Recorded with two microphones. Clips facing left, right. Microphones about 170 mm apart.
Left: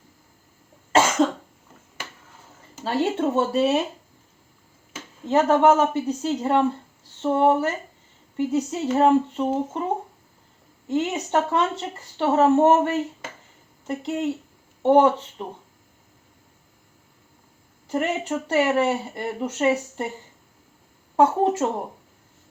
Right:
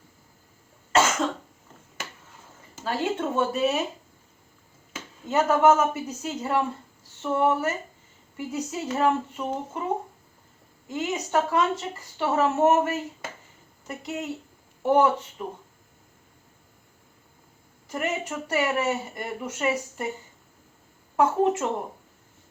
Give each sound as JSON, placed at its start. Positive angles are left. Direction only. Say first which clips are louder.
{"t": 2.8, "sound": "speech", "louder": "left 4 dB", "side_deg": 30}
{"t": 5.2, "sound": "speech", "louder": "left 3 dB", "side_deg": 30}
{"t": 17.8, "sound": "speech", "louder": "left 5 dB", "side_deg": 30}
{"t": 21.2, "sound": "speech", "louder": "left 3 dB", "side_deg": 30}